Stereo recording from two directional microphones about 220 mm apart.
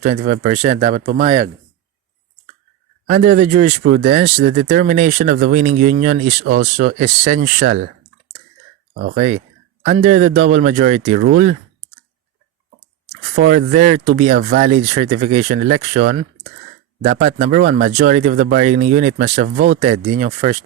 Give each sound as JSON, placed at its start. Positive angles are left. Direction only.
{"t": 0.0, "sound": "speech", "side_deg": -30}
{"t": 3.1, "sound": "speech", "side_deg": -35}
{"t": 9.1, "sound": "speech", "side_deg": -35}
{"t": 13.5, "sound": "speech", "side_deg": -35}